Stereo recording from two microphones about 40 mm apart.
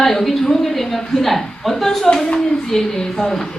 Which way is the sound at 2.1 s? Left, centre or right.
Centre.